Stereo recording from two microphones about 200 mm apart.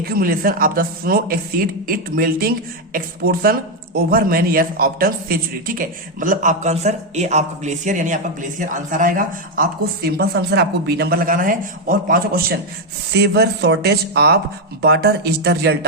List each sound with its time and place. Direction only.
0.0 s speech: 50° right (ahead or behind)